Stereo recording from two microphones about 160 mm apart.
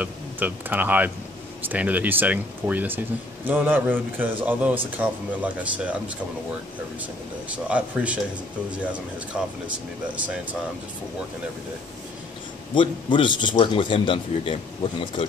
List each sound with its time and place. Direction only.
0.0 s speech: 10° right (ahead or behind)
7.4 s speech: 10° right (ahead or behind)
9.3 s speech: 5° right (ahead or behind)
12.7 s a man's voice: 30° left (ahead or behind)